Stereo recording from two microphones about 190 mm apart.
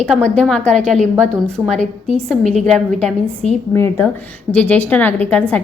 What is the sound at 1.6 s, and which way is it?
Speech, 15° right (ahead or behind).